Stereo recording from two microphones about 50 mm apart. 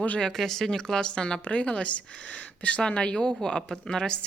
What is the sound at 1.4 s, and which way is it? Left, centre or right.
Speech, left.